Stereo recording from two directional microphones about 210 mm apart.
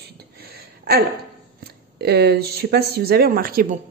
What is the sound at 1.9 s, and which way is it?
A woman's voice, 50° right (ahead or behind).